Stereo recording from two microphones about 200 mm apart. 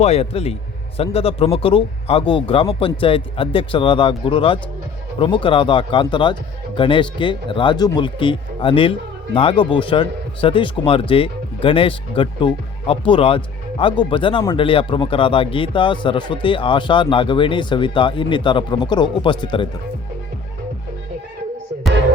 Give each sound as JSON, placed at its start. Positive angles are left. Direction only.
{"t": 0.0, "sound": "a man's voice", "side_deg": 30}